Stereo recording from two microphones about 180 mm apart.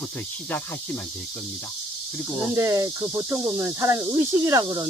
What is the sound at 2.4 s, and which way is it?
Speech, 15° right (ahead or behind).